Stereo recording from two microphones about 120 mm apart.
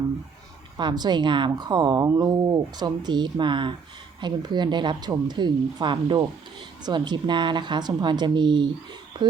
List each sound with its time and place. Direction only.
0.8 s a woman's voice: 35° right (ahead or behind)